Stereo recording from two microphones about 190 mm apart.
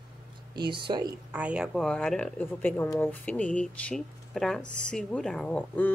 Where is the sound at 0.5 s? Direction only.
25° right (ahead or behind).